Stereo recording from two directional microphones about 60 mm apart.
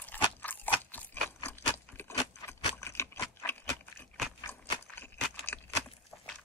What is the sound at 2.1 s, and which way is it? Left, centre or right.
Keys jangling, left.